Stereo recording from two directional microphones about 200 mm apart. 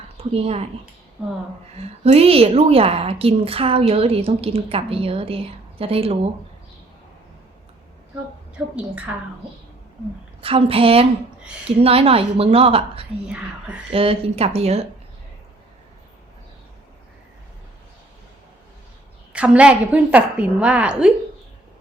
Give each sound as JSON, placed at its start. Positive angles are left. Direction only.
{"t": 0.2, "sound": "a woman's voice", "side_deg": -30}
{"t": 1.8, "sound": "a woman's voice", "side_deg": -30}
{"t": 8.5, "sound": "a woman's voice", "side_deg": -5}
{"t": 10.4, "sound": "a woman's voice", "side_deg": -30}
{"t": 13.2, "sound": "a woman's voice", "side_deg": -5}
{"t": 13.9, "sound": "speech", "side_deg": -30}
{"t": 19.3, "sound": "a woman's voice", "side_deg": -5}